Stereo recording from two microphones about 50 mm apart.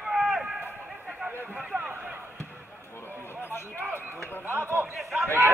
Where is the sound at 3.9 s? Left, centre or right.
Right.